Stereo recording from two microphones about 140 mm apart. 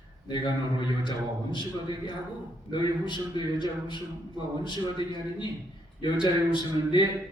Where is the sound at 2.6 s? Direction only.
35° left (ahead or behind).